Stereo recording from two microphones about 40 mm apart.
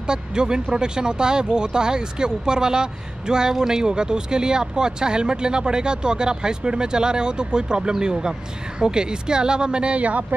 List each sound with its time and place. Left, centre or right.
0.0 s speech: centre; by 10.2 s right